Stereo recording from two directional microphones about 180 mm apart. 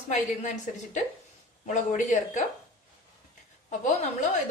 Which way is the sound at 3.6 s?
40° left (ahead or behind).